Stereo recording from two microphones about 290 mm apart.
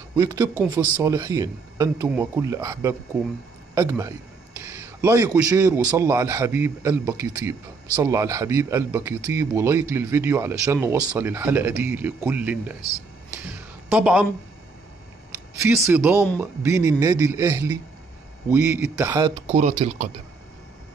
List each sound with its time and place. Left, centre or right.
0.1 s a man's voice: centre
13.5 s a sound: centre
15.6 s a man's voice: centre
19.4 s speech: right